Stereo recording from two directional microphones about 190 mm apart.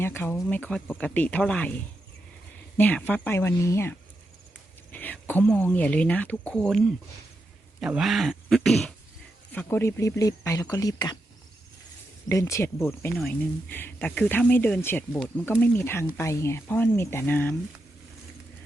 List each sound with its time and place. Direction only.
0.0 s speech: 10° left (ahead or behind)
12.3 s speech: 15° left (ahead or behind)